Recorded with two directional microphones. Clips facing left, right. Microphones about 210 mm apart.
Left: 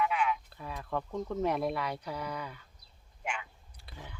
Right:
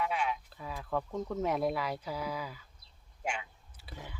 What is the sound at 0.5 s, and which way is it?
Speech, centre (ahead or behind).